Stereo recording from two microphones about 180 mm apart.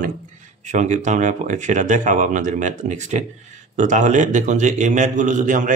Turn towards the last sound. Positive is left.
turn(degrees=-45)  # may be behind; listen again after turning